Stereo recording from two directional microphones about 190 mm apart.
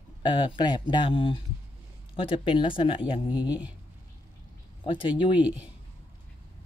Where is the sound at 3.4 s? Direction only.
5° right (ahead or behind).